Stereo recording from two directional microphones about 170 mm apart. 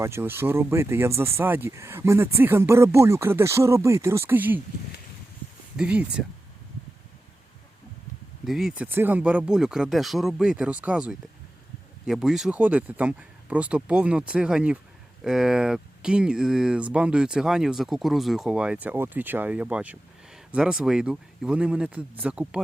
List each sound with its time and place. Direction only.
0.0 s speech: 15° right (ahead or behind)
5.7 s speech: 5° right (ahead or behind)
8.4 s speech: centre (ahead or behind)